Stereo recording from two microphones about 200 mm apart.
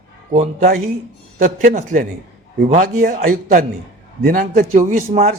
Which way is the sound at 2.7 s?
45° right (ahead or behind).